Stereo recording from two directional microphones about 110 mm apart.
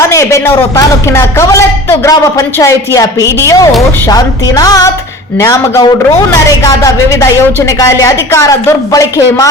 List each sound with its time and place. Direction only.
0.0 s a woman's voice: 30° left (ahead or behind)